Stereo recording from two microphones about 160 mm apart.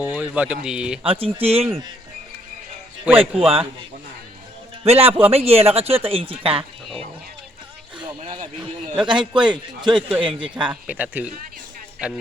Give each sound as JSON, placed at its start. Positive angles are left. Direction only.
{"t": 0.0, "sound": "speech", "side_deg": -10}
{"t": 1.0, "sound": "speech", "side_deg": -35}
{"t": 3.2, "sound": "speech", "side_deg": -35}
{"t": 4.8, "sound": "a man's voice", "side_deg": -40}
{"t": 8.2, "sound": "a sound", "side_deg": -40}
{"t": 9.0, "sound": "a man's voice", "side_deg": -30}
{"t": 10.7, "sound": "speech", "side_deg": -10}